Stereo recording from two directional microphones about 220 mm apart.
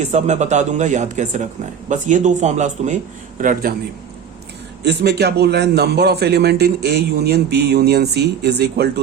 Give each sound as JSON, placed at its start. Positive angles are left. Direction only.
{"t": 0.0, "sound": "a man's voice", "side_deg": -30}
{"t": 4.8, "sound": "a man's voice", "side_deg": -50}